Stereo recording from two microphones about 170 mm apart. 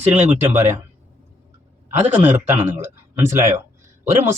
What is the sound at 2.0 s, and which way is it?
Speech, 10° right (ahead or behind).